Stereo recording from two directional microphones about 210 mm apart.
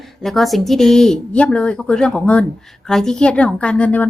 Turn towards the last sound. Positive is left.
turn(degrees=5)  # may be behind; listen again after turning